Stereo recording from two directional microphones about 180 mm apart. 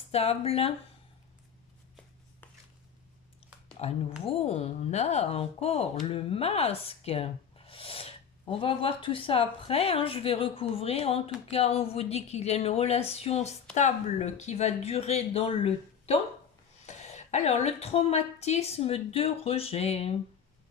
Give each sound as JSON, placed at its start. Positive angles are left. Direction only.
{"t": 0.1, "sound": "speech", "side_deg": 35}
{"t": 3.8, "sound": "speech", "side_deg": 35}